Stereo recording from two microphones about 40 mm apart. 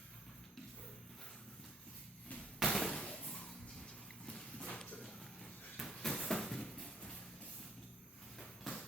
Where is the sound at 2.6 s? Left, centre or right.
Centre.